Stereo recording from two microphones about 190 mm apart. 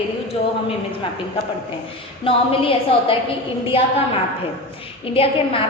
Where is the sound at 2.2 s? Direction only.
30° left (ahead or behind).